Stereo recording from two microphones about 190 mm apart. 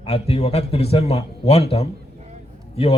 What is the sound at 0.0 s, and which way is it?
Speech, 30° left (ahead or behind).